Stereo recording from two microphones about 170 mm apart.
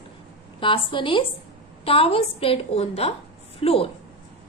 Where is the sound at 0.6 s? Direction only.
30° left (ahead or behind).